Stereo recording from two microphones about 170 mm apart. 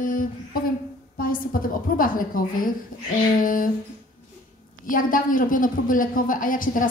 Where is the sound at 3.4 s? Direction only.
55° left (ahead or behind).